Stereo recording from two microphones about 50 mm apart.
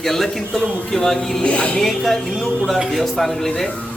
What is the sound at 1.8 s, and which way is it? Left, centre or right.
A man's voice, centre.